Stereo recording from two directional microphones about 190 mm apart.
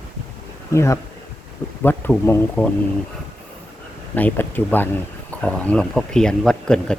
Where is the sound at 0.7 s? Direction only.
15° left (ahead or behind).